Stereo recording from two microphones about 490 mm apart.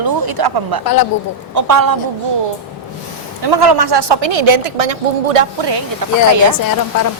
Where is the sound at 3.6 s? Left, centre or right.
Right.